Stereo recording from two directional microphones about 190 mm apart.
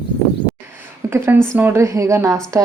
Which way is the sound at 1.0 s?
15° right (ahead or behind).